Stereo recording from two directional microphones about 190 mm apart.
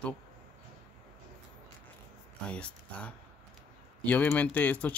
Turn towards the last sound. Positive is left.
turn(degrees=10)  # may be behind; listen again after turning